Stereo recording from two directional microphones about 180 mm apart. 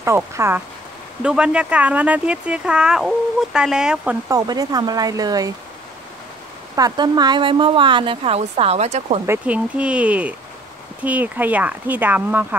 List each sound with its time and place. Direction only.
0.0 s speech: 15° right (ahead or behind)
4.3 s speech: 20° right (ahead or behind)
6.7 s speech: 20° right (ahead or behind); by 9.2 s 40° right (ahead or behind)
9.2 s speech: 10° right (ahead or behind)